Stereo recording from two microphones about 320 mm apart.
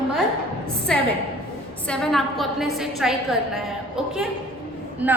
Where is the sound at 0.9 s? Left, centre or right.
Centre.